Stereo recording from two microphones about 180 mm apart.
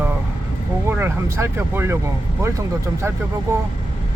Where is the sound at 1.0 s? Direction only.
15° right (ahead or behind).